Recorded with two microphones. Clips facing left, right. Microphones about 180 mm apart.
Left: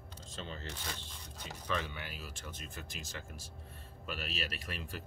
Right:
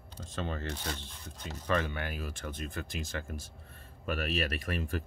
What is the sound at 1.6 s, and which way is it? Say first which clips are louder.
Speech: right 7 dB; 55° right (ahead or behind).